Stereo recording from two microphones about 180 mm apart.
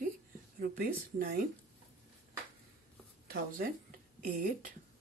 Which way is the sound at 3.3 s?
55° right (ahead or behind).